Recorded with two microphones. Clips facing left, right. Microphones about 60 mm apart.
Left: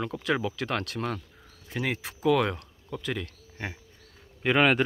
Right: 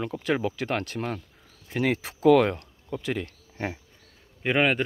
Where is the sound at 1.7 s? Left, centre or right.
Right.